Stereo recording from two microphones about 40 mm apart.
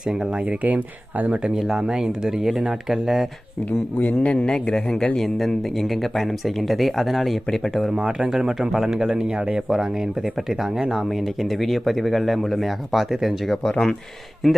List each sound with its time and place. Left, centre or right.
0.0 s speech: centre
0.4 s speech: right
1.5 s speech: centre
3.9 s speech: left
4.3 s speech: left
5.1 s speech: centre
7.7 s speech: centre
7.9 s speech: right
8.3 s speech: centre
11.1 s speech: centre